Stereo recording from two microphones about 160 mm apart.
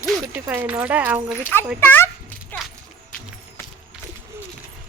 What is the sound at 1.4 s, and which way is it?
Speech, 15° left (ahead or behind).